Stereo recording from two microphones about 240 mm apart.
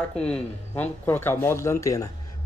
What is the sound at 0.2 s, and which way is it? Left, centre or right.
A man's voice, centre.